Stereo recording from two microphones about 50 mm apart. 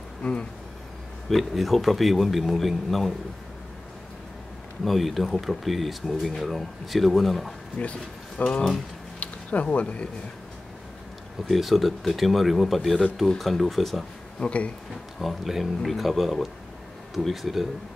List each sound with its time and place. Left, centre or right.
0.2 s speech: left
1.3 s a man's voice: centre
4.8 s a man's voice: centre
7.7 s speech: left
8.5 s speech: centre
9.2 s speech: left
11.4 s a man's voice: centre
14.4 s speech: left
15.1 s a man's voice: centre